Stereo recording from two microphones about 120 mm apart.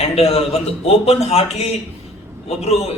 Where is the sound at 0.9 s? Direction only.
60° left (ahead or behind).